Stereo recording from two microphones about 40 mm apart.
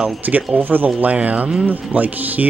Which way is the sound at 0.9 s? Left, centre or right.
Right.